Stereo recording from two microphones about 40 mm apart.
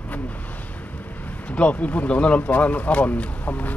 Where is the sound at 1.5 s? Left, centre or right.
Left.